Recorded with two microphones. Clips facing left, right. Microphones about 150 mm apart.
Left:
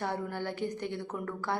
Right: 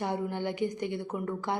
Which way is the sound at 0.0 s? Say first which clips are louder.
Right 3 dB; 15° right (ahead or behind).